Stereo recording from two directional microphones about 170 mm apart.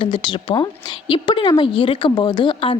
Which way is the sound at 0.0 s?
25° left (ahead or behind).